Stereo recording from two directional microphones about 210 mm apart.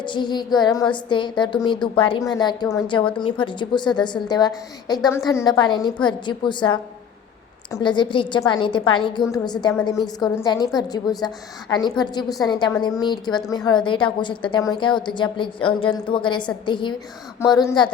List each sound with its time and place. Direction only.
0.0 s a woman's voice: 20° left (ahead or behind)